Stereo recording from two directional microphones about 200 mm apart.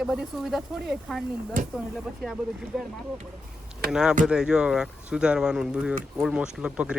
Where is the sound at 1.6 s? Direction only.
40° right (ahead or behind).